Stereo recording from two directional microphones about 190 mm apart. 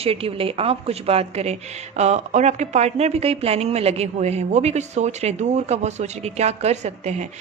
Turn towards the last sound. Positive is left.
turn(degrees=-35)  # may be behind; listen again after turning